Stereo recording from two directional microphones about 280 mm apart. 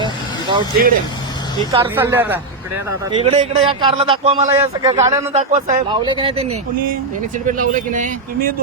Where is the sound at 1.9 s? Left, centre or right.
Centre.